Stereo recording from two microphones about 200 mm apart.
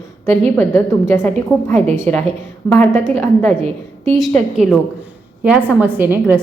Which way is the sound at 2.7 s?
10° left (ahead or behind).